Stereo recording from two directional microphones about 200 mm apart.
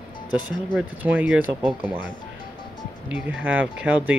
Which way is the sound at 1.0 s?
10° right (ahead or behind).